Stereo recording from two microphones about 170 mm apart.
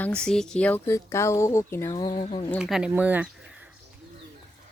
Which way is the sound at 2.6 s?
5° right (ahead or behind).